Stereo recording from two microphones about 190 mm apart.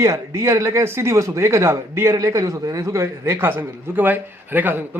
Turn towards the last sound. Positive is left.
turn(degrees=-10)  # may be behind; listen again after turning